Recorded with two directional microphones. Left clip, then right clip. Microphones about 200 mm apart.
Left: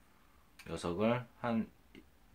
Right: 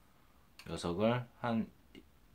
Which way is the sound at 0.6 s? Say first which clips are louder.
Even; centre (ahead or behind).